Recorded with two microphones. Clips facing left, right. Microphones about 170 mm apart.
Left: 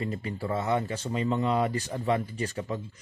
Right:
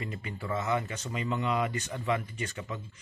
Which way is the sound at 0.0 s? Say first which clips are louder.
Left 6 dB; 35° left (ahead or behind).